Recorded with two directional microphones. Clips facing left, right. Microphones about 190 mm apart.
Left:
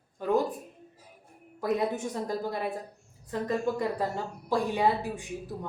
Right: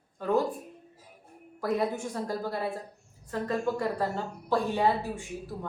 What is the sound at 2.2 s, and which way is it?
A woman's voice, 15° left (ahead or behind).